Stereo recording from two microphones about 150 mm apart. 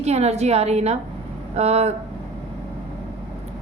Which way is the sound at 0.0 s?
45° right (ahead or behind).